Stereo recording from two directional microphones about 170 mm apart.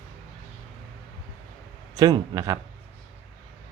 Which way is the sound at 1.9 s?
20° right (ahead or behind).